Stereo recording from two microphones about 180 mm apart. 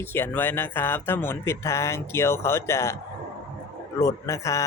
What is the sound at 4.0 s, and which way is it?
Speech, 15° left (ahead or behind).